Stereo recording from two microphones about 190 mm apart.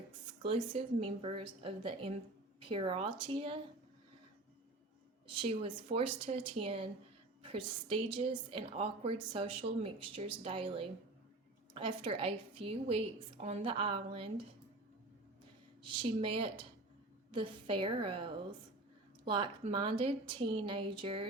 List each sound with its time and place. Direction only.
0.4 s a woman's voice: 30° right (ahead or behind)
5.4 s a woman's voice: 30° right (ahead or behind)
16.0 s a woman's voice: 25° right (ahead or behind)